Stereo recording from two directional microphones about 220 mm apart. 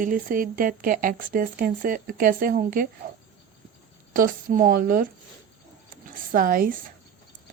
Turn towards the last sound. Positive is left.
turn(degrees=-40)  # may be behind; listen again after turning